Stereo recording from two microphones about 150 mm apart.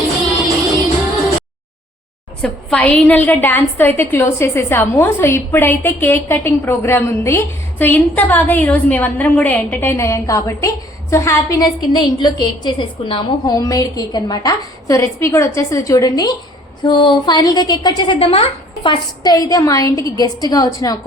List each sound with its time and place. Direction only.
2.4 s a woman's voice: 5° left (ahead or behind); by 21.0 s 25° left (ahead or behind)